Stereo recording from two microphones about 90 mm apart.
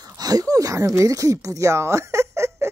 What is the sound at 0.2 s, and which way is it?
Speech, 45° right (ahead or behind).